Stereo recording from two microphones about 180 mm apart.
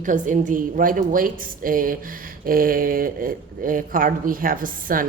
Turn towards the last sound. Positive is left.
turn(degrees=-50)  # may be behind; listen again after turning